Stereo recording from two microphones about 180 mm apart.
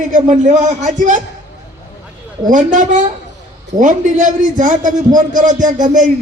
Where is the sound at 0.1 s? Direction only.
40° right (ahead or behind).